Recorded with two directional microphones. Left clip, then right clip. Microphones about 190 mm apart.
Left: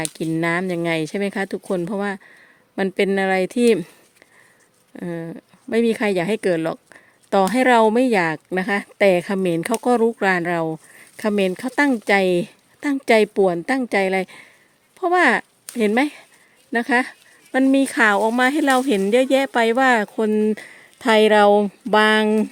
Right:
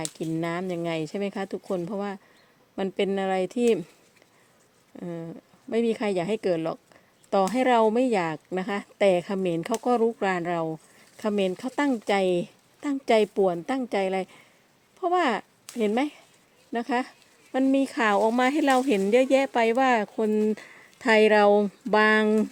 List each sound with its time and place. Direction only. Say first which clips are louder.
0.0 s speech: left 7 dB; 45° left (ahead or behind)
4.9 s speech: left 7 dB; 35° left (ahead or behind)